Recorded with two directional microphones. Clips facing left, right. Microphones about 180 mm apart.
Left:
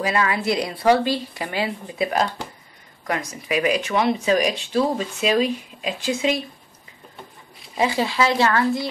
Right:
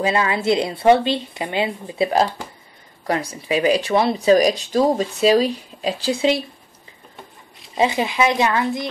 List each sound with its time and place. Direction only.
0.0 s a woman's voice: 25° right (ahead or behind)
7.7 s a woman's voice: 20° right (ahead or behind)